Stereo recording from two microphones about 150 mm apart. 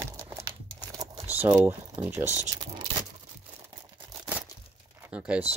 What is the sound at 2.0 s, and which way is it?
Speech, 15° right (ahead or behind).